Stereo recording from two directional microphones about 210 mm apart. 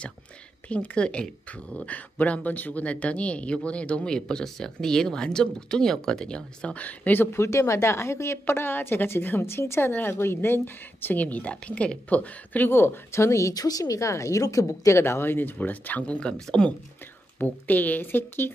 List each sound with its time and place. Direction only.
0.7 s speech: 5° left (ahead or behind)